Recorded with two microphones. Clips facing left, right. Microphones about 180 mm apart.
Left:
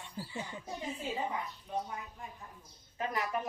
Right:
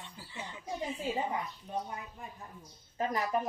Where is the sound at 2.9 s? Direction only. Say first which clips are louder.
Right 3 dB; 35° right (ahead or behind).